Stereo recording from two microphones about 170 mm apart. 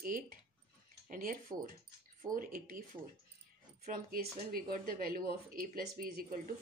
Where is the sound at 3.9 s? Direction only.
60° right (ahead or behind).